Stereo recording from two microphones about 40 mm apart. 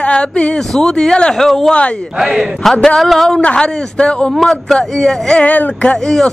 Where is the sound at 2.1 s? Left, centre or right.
Centre.